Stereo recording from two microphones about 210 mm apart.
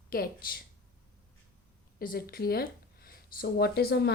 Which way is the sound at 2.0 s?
45° left (ahead or behind).